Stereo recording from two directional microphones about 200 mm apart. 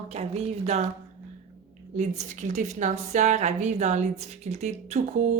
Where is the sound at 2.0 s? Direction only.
35° right (ahead or behind).